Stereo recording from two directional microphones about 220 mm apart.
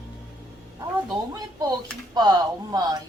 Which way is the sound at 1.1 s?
15° right (ahead or behind).